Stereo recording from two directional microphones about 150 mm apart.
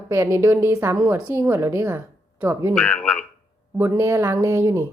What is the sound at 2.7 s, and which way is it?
Speech, 10° left (ahead or behind).